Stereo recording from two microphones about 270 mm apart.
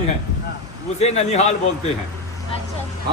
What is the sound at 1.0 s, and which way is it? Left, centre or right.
Speech, left.